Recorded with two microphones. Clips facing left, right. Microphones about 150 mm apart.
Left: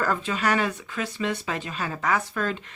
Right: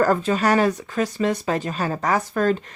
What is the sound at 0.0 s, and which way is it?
A woman's voice, 40° right (ahead or behind).